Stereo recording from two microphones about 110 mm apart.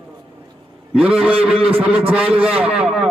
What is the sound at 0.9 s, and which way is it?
A man's voice, 10° right (ahead or behind).